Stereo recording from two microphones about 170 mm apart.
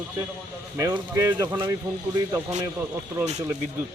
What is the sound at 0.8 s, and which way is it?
Speech, 20° right (ahead or behind).